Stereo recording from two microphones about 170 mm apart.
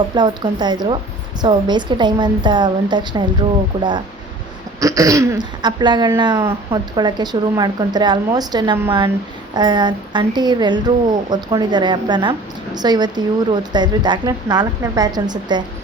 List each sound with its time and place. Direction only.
0.2 s a woman's voice: 25° right (ahead or behind)